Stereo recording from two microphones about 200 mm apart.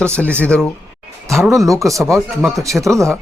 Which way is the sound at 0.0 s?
5° left (ahead or behind).